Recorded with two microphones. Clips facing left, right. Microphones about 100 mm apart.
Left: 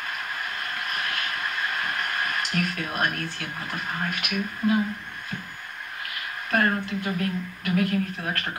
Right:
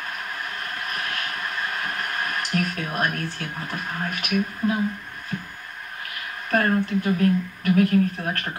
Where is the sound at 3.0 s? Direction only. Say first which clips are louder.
Right 2 dB; 40° right (ahead or behind).